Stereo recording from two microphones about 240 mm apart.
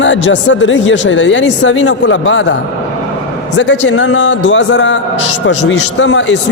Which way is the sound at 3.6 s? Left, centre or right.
Left.